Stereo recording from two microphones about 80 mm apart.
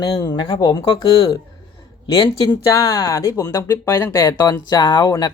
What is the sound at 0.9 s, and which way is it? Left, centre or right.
Speech, left.